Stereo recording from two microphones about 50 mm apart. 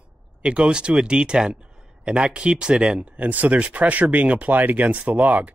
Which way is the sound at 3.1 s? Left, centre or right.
Right.